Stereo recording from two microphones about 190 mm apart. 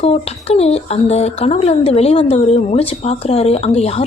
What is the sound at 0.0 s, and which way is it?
Speech, 35° left (ahead or behind).